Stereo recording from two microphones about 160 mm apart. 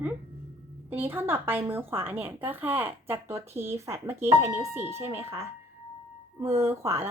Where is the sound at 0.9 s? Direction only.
15° right (ahead or behind).